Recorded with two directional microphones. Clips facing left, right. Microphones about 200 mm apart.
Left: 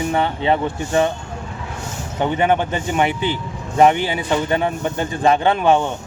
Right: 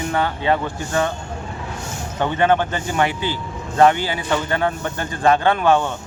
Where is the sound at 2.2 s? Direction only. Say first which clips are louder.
Even; 15° left (ahead or behind).